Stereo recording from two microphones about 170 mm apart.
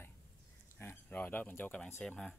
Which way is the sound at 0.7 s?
10° left (ahead or behind).